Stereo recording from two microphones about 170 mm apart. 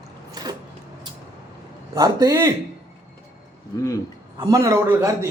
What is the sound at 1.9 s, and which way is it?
Speech, 20° right (ahead or behind).